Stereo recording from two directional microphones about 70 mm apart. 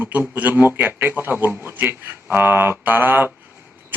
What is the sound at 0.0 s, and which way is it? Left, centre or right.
Speech, right.